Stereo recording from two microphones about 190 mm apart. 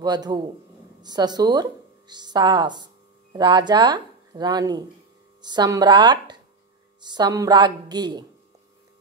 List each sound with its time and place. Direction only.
0.0 s a woman's voice: 20° right (ahead or behind)